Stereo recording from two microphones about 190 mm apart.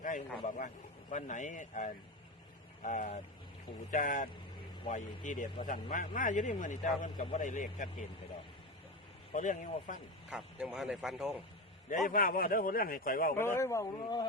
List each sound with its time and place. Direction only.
0.0 s a man's voice: 40° left (ahead or behind)
9.3 s speech: 40° left (ahead or behind)
10.2 s a man's voice: centre (ahead or behind)
12.0 s speech: 45° left (ahead or behind)
13.3 s speech: 15° left (ahead or behind)